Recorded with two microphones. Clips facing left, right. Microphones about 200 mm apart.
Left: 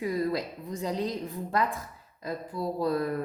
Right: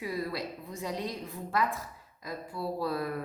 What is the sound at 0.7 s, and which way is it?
Speech, 35° left (ahead or behind).